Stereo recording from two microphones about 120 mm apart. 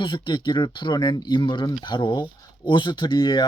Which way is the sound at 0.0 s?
40° left (ahead or behind).